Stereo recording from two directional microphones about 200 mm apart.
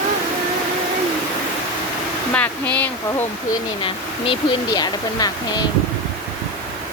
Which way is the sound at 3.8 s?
25° left (ahead or behind).